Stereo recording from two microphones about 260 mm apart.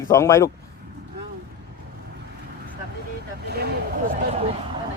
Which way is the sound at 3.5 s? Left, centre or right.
Right.